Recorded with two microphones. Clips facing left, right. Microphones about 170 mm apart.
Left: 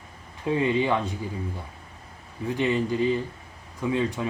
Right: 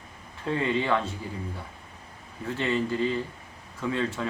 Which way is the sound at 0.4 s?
15° left (ahead or behind).